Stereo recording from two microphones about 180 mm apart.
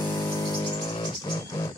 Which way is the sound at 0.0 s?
20° left (ahead or behind).